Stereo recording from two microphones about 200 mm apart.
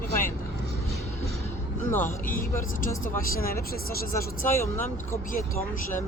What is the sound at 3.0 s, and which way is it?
Speech, 45° left (ahead or behind).